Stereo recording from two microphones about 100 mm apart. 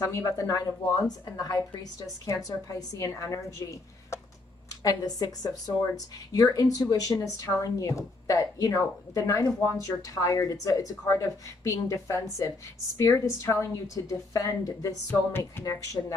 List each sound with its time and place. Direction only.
0.0 s a woman's voice: 30° left (ahead or behind)
15.0 s music: 20° left (ahead or behind)
15.6 s speech: 35° left (ahead or behind)